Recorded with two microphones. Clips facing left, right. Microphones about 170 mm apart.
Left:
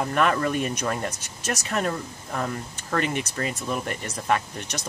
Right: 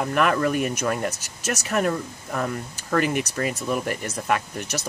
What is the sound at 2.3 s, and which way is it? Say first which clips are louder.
Speech: right 2 dB; centre (ahead or behind).